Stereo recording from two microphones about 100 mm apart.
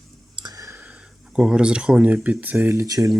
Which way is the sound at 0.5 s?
35° right (ahead or behind).